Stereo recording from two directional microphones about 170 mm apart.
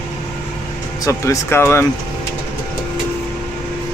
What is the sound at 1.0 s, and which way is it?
Speech, 20° left (ahead or behind).